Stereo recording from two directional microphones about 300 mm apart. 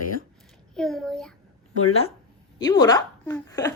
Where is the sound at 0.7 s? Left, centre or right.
Centre.